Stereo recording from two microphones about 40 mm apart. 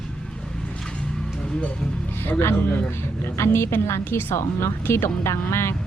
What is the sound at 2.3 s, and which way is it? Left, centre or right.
A woman's voice, left.